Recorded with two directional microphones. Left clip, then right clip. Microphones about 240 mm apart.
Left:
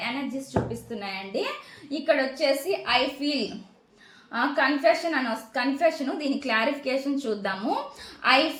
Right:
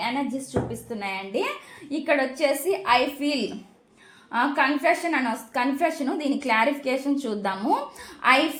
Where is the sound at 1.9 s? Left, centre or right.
Right.